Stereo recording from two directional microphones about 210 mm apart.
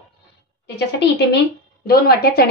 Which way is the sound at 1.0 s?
55° left (ahead or behind).